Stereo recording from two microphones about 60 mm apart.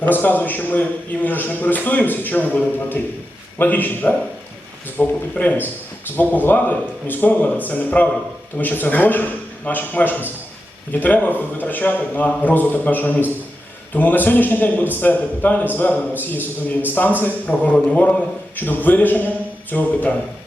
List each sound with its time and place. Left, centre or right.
0.0 s a man's voice: left